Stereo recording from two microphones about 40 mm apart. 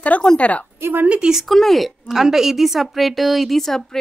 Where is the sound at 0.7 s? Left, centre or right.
Right.